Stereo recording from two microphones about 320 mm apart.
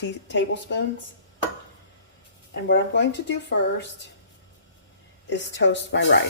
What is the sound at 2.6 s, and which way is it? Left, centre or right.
Speech, left.